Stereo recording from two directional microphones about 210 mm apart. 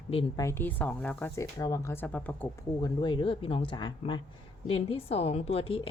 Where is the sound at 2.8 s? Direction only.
20° left (ahead or behind).